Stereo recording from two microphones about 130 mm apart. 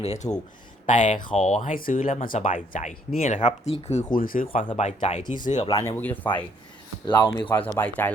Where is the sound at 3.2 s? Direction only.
70° left (ahead or behind).